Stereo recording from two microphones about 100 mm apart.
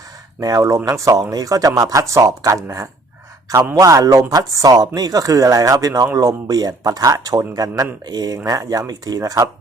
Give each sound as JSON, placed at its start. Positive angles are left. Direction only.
{"t": 0.3, "sound": "speech", "side_deg": -35}